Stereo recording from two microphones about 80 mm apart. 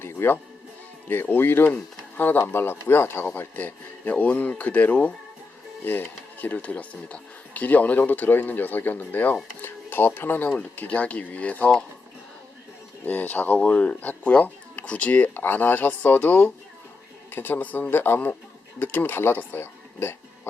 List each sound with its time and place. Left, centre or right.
0.0 s speech: left; by 11.9 s centre
13.1 s speech: left